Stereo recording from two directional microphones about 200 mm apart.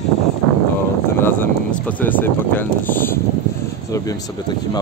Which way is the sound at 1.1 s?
10° left (ahead or behind).